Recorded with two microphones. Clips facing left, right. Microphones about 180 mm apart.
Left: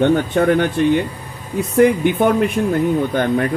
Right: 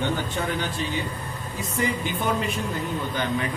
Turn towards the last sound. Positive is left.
turn(degrees=50)  # may be behind; listen again after turning